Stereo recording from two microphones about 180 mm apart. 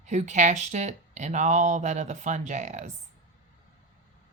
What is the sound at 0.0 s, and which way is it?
Speech, 40° right (ahead or behind).